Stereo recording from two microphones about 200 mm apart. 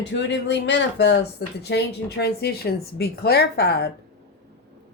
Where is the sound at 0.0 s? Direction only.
60° left (ahead or behind).